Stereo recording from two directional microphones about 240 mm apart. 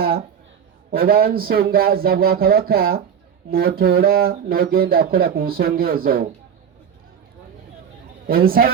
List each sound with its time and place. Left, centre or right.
0.0 s a sound: right
0.9 s speech: right
8.3 s speech: right